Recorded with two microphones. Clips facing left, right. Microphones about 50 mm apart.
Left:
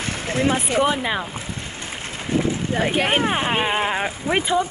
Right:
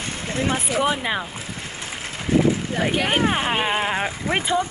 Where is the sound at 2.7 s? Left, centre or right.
Centre.